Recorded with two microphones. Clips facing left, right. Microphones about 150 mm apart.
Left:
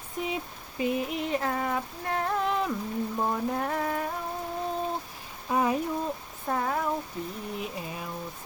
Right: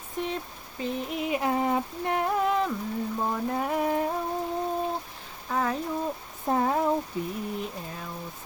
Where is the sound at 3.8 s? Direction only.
20° right (ahead or behind).